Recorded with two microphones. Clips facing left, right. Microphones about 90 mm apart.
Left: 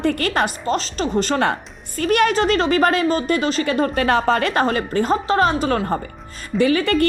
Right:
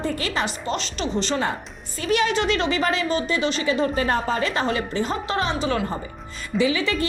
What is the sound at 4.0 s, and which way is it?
A woman's voice, 80° left.